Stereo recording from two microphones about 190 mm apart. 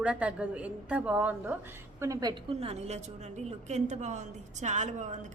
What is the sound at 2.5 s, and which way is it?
A woman's voice, 30° right (ahead or behind).